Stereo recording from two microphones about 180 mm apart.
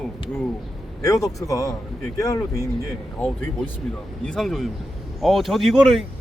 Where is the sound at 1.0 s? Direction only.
20° left (ahead or behind).